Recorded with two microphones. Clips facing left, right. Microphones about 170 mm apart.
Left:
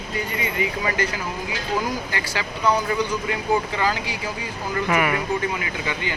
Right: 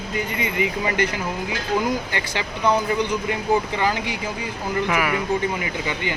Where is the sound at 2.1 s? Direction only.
20° right (ahead or behind).